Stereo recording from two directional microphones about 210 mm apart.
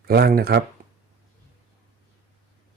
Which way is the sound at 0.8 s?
40° right (ahead or behind).